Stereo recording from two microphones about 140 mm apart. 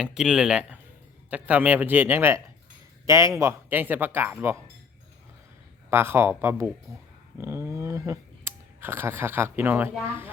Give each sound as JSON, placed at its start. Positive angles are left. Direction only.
{"t": 0.0, "sound": "speech", "side_deg": -5}
{"t": 5.9, "sound": "speech", "side_deg": -15}